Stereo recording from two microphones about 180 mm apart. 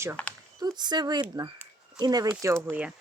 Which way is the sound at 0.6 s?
25° right (ahead or behind).